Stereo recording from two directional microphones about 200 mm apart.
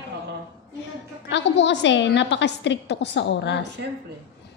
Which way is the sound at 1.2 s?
60° left (ahead or behind).